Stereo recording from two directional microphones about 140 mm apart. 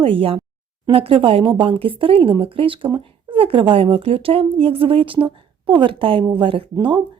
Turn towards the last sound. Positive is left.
turn(degrees=-35)  # may be behind; listen again after turning